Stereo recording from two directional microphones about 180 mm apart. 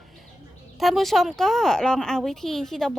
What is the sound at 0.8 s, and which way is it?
A woman's voice, centre (ahead or behind).